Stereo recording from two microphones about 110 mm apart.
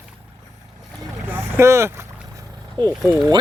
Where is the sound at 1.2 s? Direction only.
20° right (ahead or behind).